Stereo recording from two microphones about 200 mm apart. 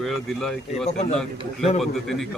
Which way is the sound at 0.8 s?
35° left (ahead or behind).